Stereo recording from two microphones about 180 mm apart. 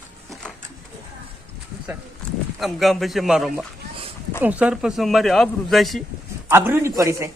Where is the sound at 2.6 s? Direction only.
Centre (ahead or behind).